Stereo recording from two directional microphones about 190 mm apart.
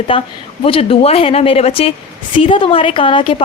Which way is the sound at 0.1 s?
30° left (ahead or behind).